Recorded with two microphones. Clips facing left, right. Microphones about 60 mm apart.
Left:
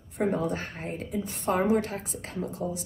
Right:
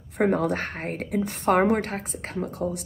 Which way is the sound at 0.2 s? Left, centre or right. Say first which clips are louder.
Right 5 dB; right.